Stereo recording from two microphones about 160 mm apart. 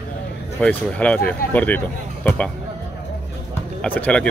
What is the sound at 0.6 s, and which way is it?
Speech, 10° left (ahead or behind).